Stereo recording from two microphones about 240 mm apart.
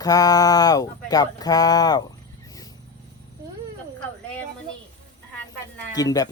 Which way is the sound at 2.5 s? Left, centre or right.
Centre.